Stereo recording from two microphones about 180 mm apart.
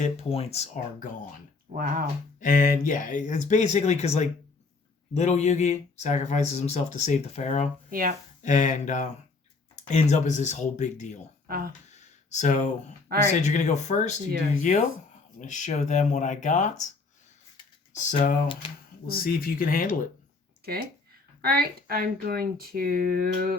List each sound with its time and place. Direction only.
0.0 s speech: 35° left (ahead or behind)
1.7 s speech: 50° right (ahead or behind)
2.4 s speech: 50° left (ahead or behind)
7.9 s speech: 50° right (ahead or behind)
8.4 s speech: 45° left (ahead or behind)
11.4 s speech: 55° right (ahead or behind)
11.9 s a sound: 40° left (ahead or behind)
13.4 s speech: 40° left (ahead or behind)
17.9 s speech: 45° left (ahead or behind)
19.0 s speech: 55° left (ahead or behind)
21.4 s speech: 60° right (ahead or behind)